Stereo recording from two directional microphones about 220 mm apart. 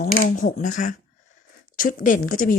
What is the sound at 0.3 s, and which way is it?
Speech, 35° left (ahead or behind).